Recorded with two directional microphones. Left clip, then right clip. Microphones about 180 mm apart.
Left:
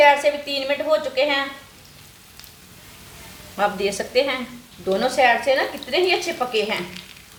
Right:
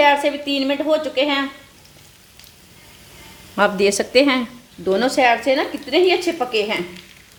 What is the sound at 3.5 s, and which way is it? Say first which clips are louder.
A woman's voice: right 5 dB; 60° right (ahead or behind).